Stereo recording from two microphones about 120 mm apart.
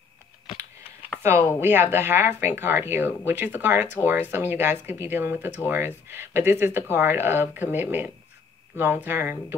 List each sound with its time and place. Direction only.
1.6 s speech: 20° right (ahead or behind)